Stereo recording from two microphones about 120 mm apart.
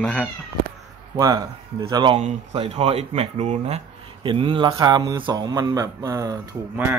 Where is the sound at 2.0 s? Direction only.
50° right (ahead or behind).